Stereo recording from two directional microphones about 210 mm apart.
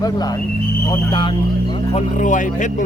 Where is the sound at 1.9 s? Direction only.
35° left (ahead or behind).